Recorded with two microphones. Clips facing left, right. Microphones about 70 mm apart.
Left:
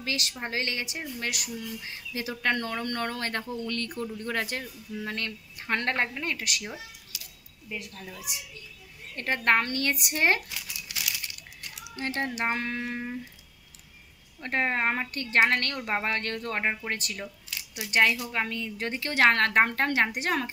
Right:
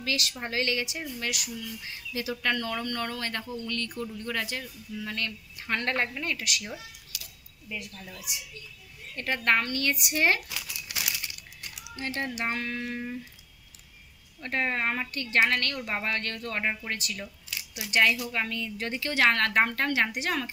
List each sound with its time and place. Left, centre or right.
0.0 s a woman's voice: left
7.1 s scissors: left
9.1 s a woman's voice: left
12.0 s a woman's voice: left
14.4 s a woman's voice: left